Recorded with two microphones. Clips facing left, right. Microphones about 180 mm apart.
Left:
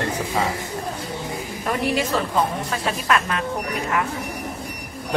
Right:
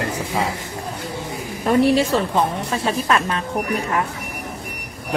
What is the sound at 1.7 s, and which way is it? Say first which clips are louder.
A woman's voice: right 7 dB; 30° right (ahead or behind).